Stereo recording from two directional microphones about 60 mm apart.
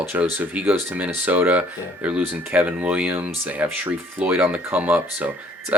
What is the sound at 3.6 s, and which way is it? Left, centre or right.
Speech, right.